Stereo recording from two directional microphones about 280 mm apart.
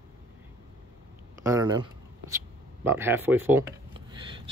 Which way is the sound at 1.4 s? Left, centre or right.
Centre.